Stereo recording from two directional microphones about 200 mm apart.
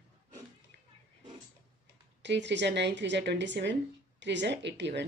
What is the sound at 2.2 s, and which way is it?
Speech, 60° right (ahead or behind).